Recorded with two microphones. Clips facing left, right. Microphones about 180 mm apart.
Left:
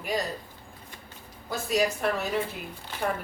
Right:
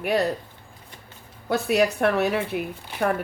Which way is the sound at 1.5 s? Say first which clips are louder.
Right 5 dB; 65° right (ahead or behind).